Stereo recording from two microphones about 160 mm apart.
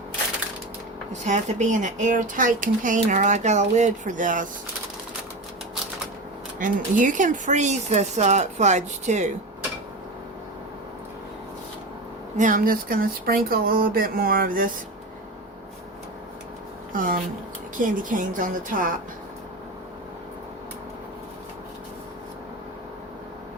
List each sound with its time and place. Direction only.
1.2 s speech: 50° right (ahead or behind)
6.6 s speech: 55° right (ahead or behind)
12.4 s speech: 60° right (ahead or behind)
16.9 s speech: 60° right (ahead or behind)